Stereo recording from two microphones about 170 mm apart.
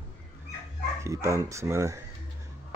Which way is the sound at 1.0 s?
15° right (ahead or behind).